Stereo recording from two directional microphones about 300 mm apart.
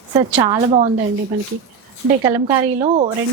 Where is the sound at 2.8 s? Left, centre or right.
Right.